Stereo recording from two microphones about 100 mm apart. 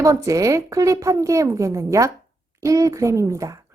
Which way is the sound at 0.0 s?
35° right (ahead or behind).